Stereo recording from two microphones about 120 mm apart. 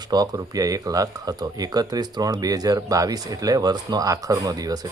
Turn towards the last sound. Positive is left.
turn(degrees=-30)  # may be behind; listen again after turning